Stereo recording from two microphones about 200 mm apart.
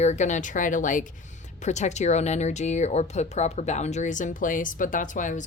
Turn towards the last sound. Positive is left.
turn(degrees=40)  # may be behind; listen again after turning